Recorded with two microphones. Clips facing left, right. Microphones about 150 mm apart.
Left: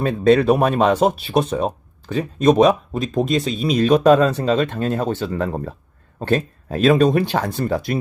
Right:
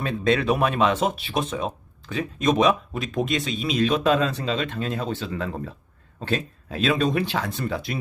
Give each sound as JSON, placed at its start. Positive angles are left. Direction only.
{"t": 0.0, "sound": "speech", "side_deg": 40}